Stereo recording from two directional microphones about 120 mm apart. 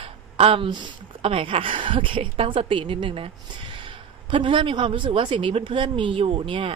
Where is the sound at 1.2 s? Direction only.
50° right (ahead or behind).